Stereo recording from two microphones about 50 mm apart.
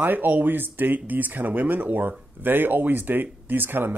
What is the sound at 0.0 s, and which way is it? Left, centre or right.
Speech, right.